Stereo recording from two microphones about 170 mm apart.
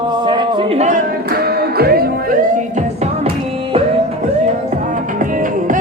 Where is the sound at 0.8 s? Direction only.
50° right (ahead or behind); by 2.1 s 65° right (ahead or behind).